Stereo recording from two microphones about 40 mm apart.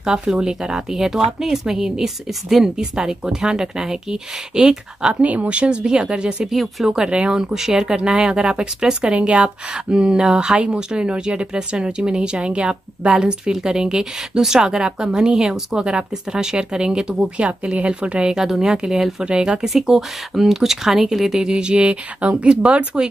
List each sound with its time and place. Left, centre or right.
0.0 s speech: right
5.2 s speech: right
6.5 s speech: centre
6.9 s speech: right
18.3 s speech: centre
19.6 s speech: centre; by 22.8 s right